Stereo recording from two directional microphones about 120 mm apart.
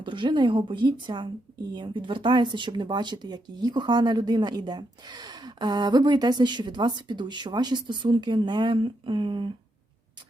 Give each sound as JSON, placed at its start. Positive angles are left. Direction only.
{"t": 0.0, "sound": "speech", "side_deg": -40}